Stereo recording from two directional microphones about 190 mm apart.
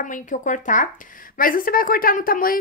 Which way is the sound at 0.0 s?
45° left (ahead or behind).